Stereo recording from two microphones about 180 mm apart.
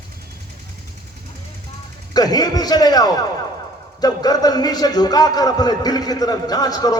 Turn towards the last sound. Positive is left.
turn(degrees=20)  # may be behind; listen again after turning